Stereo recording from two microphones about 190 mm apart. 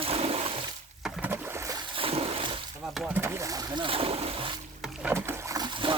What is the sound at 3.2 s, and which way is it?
Speech, 15° right (ahead or behind).